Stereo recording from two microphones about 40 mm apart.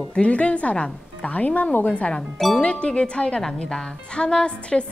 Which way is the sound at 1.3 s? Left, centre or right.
Left.